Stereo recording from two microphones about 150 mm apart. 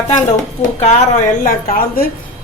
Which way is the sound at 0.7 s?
45° left (ahead or behind).